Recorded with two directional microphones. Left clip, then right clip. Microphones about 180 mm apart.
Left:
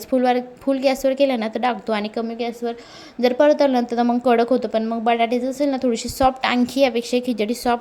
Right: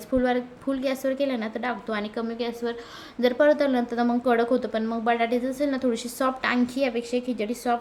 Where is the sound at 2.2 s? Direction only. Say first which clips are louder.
Left 4 dB; 20° left (ahead or behind).